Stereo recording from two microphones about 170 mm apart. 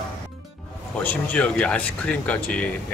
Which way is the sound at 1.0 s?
5° left (ahead or behind).